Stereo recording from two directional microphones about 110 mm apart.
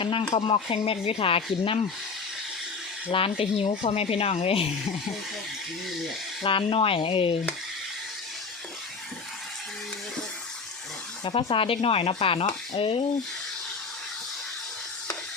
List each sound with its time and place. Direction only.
0.0 s speech: 50° left (ahead or behind)
3.1 s speech: 55° left (ahead or behind)
6.4 s speech: 55° left (ahead or behind)
11.2 s speech: 55° left (ahead or behind)